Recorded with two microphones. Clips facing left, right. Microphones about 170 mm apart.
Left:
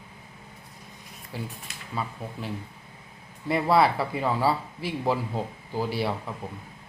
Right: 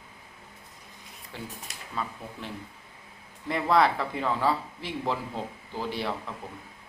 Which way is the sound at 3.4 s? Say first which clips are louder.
Left 2 dB; 10° left (ahead or behind).